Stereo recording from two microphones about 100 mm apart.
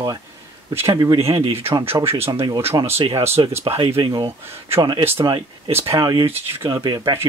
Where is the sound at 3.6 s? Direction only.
70° right (ahead or behind).